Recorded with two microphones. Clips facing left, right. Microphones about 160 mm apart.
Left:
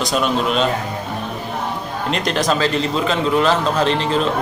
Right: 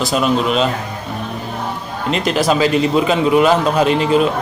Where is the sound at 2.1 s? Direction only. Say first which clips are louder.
Right 4 dB; 5° right (ahead or behind).